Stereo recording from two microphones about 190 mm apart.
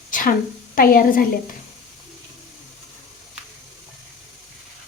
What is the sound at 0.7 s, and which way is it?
Speech, 50° left (ahead or behind).